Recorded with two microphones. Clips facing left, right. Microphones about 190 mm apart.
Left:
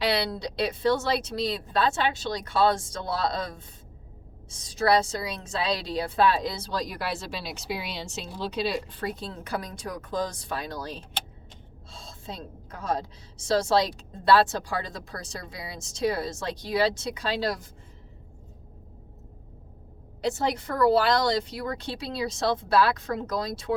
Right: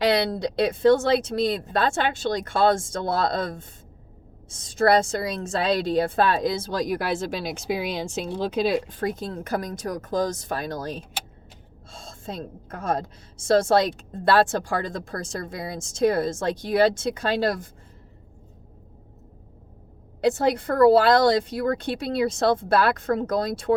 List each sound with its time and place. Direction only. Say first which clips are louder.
0.0 s a woman's voice: right 5 dB; 50° right (ahead or behind)
20.2 s a woman's voice: right 6 dB; 55° right (ahead or behind)